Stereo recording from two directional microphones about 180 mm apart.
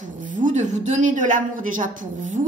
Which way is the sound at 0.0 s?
45° right (ahead or behind).